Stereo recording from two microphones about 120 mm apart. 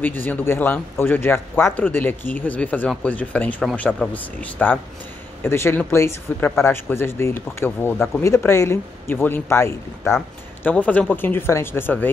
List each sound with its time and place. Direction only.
0.0 s speech: 15° left (ahead or behind)